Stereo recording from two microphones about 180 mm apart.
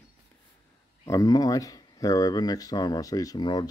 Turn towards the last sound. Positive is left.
turn(degrees=25)  # may be behind; listen again after turning